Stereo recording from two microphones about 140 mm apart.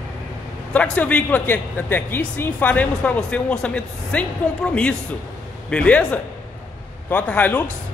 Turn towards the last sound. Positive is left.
turn(degrees=15)  # may be behind; listen again after turning